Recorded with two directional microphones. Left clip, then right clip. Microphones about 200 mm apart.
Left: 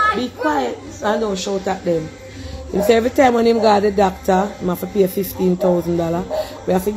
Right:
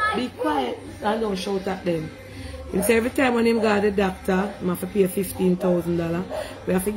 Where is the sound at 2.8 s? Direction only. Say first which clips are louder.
Left 7 dB; 15° right (ahead or behind).